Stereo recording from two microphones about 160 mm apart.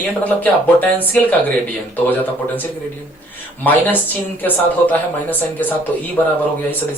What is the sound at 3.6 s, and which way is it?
A man's voice, 10° left (ahead or behind).